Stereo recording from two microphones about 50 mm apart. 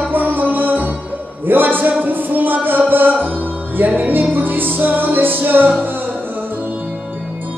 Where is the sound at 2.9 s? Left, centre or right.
Right.